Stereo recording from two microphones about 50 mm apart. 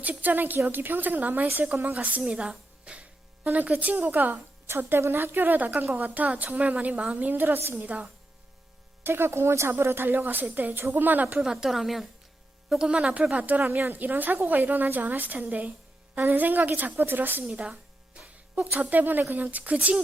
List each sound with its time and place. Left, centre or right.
0.0 s a woman's voice: right
2.3 s a woman's voice: centre
2.8 s speech: right
4.3 s music: right
4.9 s a woman's voice: right
7.8 s a woman's voice: right
9.0 s speech: right
9.8 s a woman's voice: right
11.3 s a woman's voice: centre
12.9 s speech: right
13.3 s a woman's voice: right
13.7 s a woman's voice: right
18.8 s a woman's voice: right